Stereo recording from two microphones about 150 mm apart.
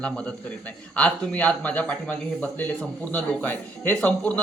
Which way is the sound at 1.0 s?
10° left (ahead or behind).